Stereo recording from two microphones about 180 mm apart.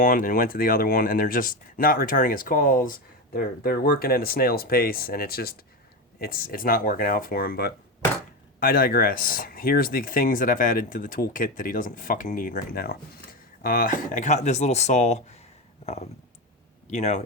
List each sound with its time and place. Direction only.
0.0 s speech: 50° left (ahead or behind)
16.9 s speech: 35° left (ahead or behind)